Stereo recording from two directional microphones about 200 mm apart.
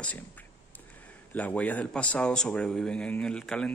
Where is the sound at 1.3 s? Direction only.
5° left (ahead or behind).